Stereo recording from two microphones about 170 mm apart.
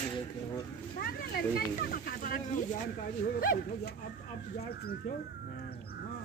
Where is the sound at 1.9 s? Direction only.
60° left (ahead or behind).